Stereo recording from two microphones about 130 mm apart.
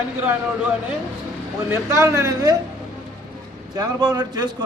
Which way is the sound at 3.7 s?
30° right (ahead or behind).